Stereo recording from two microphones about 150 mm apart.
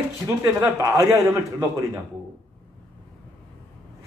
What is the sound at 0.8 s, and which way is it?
A man's voice, 20° right (ahead or behind).